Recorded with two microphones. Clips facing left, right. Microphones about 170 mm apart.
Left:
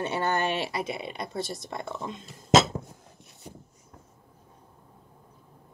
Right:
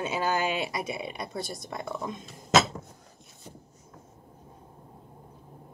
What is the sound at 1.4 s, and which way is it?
Speech, 25° left (ahead or behind).